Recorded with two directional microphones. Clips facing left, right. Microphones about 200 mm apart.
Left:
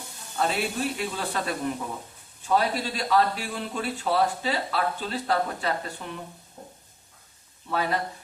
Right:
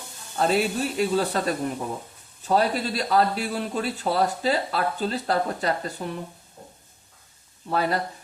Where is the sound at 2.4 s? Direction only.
40° right (ahead or behind).